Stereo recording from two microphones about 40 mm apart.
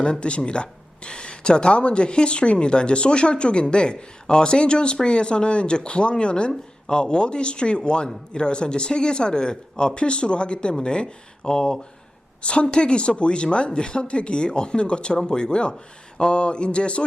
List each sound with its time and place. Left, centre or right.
0.0 s a woman's voice: left